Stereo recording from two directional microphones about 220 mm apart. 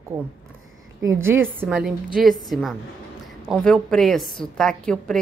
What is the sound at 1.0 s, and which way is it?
Speech, 10° right (ahead or behind).